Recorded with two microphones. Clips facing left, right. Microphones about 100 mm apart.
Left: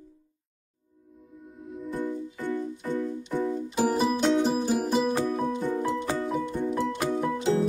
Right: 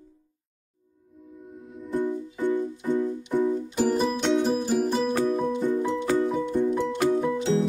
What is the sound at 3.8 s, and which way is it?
Music, 5° left (ahead or behind).